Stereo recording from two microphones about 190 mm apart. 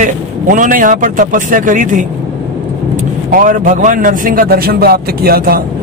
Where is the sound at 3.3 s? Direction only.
45° right (ahead or behind).